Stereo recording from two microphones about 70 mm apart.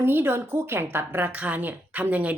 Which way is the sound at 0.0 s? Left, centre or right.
Right.